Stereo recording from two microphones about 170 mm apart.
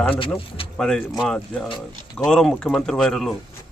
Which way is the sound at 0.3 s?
30° left (ahead or behind).